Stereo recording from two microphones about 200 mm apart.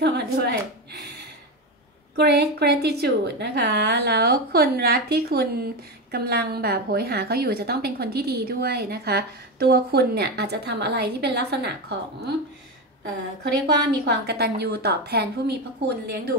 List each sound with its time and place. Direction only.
0.0 s a sound: 55° right (ahead or behind)
2.1 s a woman's voice: 55° right (ahead or behind)
13.4 s a woman's voice: 55° right (ahead or behind)